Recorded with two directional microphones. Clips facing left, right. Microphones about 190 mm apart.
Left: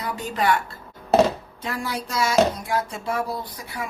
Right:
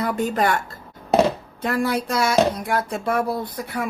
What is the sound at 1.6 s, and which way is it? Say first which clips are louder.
Speech: right 7 dB; 60° right (ahead or behind).